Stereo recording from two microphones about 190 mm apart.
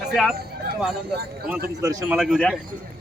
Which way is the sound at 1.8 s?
20° right (ahead or behind).